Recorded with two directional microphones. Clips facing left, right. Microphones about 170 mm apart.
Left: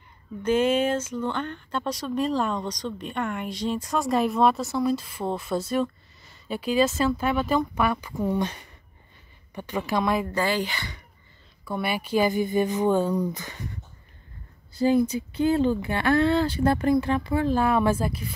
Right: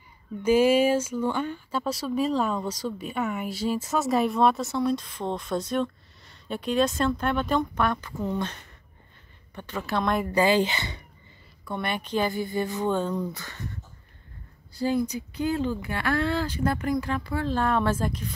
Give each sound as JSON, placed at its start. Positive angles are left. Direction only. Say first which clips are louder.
{"t": 0.4, "sound": "speech", "louder": "right 2 dB", "side_deg": -10}
{"t": 10.2, "sound": "speech", "louder": "right 4 dB", "side_deg": -15}
{"t": 11.6, "sound": "speech", "louder": "left 2 dB", "side_deg": 5}
{"t": 14.8, "sound": "speech", "louder": "left 5 dB", "side_deg": 20}